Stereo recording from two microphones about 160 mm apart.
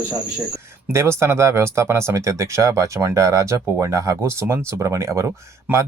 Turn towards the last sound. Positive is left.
turn(degrees=-15)  # may be behind; listen again after turning